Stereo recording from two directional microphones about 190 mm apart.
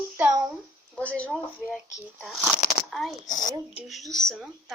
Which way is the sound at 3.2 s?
45° left (ahead or behind).